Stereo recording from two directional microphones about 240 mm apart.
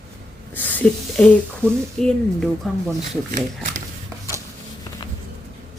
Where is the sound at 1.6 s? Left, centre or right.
Centre.